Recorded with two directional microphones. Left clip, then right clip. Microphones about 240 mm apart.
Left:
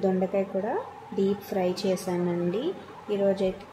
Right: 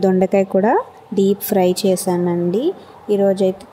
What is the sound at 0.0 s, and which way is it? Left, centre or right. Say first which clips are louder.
Speech: right 11 dB; right.